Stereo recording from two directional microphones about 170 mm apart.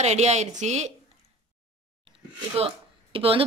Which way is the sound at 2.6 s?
35° right (ahead or behind).